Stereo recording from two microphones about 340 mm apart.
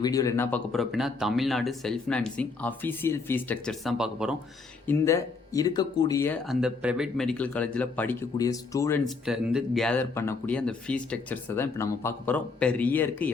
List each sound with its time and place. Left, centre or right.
0.0 s speech: centre
4.9 s speech: centre